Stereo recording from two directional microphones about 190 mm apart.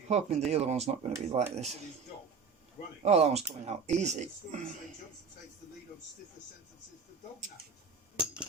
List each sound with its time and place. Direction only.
0.1 s speech: 35° right (ahead or behind)
3.0 s speech: 35° right (ahead or behind)
8.1 s a sound: 5° right (ahead or behind)